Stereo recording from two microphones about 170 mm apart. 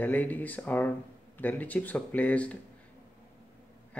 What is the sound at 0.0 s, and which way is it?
A man's voice, 10° left (ahead or behind).